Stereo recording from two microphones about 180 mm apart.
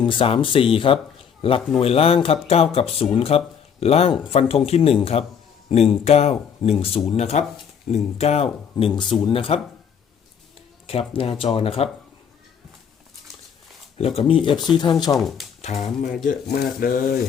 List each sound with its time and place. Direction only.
0.0 s speech: 30° left (ahead or behind)
8.7 s speech: 25° left (ahead or behind)
10.8 s speech: 30° left (ahead or behind)
14.0 s speech: 35° left (ahead or behind)
15.1 s speech: centre (ahead or behind)
15.6 s speech: 35° left (ahead or behind)
16.2 s speech: 55° left (ahead or behind)